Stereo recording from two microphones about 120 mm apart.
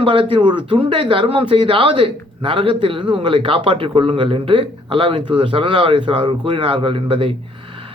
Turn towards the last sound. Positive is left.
turn(degrees=-50)  # may be behind; listen again after turning